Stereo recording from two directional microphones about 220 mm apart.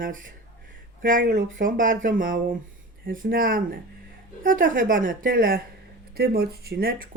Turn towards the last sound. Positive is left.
turn(degrees=-45)  # may be behind; listen again after turning